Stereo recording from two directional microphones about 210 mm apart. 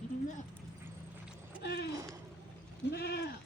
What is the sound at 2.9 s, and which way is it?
Goat, 50° left (ahead or behind).